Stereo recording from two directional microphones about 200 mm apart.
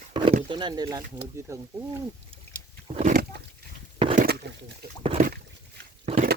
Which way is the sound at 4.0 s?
30° right (ahead or behind).